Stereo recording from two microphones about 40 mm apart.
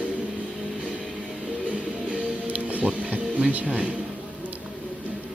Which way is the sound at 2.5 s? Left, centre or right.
Right.